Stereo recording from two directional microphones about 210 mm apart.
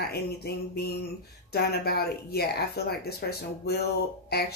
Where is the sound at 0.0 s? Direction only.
50° left (ahead or behind).